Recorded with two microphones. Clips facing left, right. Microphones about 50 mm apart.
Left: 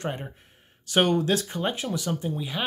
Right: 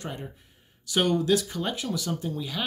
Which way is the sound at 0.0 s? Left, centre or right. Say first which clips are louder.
Left 4 dB; left.